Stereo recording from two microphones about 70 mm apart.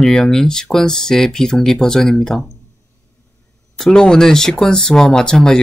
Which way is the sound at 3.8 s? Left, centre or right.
Centre.